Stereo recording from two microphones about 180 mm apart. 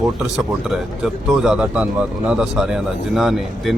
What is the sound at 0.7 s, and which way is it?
Speech, centre (ahead or behind).